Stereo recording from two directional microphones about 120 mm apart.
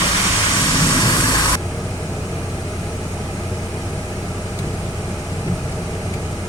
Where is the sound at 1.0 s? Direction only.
35° left (ahead or behind).